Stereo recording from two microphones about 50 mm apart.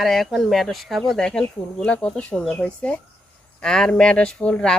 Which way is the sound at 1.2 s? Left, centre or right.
Centre.